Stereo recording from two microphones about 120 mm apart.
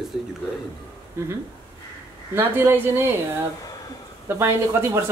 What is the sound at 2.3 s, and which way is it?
Speech, 20° right (ahead or behind).